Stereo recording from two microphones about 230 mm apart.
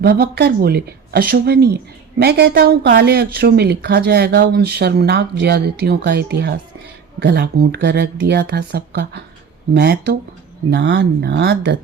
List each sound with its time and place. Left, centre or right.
0.0 s a woman's voice: right